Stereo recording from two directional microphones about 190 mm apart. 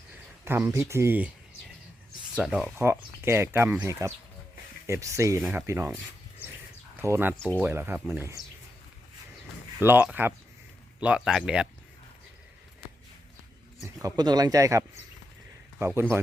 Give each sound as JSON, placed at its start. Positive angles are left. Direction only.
{"t": 0.4, "sound": "speech", "side_deg": -10}
{"t": 2.3, "sound": "speech", "side_deg": -5}
{"t": 2.7, "sound": "speech", "side_deg": -15}
{"t": 9.8, "sound": "speech", "side_deg": -10}
{"t": 13.8, "sound": "speech", "side_deg": -20}
{"t": 15.9, "sound": "speech", "side_deg": -10}